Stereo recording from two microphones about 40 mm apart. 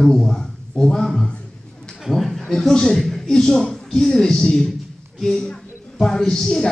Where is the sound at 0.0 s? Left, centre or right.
Centre.